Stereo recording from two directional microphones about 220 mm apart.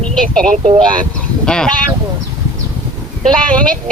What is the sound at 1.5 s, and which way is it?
Speech, 5° left (ahead or behind).